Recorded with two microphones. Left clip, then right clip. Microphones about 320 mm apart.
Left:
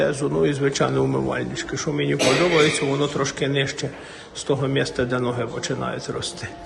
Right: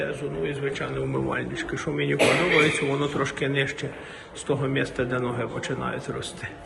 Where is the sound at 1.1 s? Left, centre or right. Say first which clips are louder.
Left 3 dB; centre.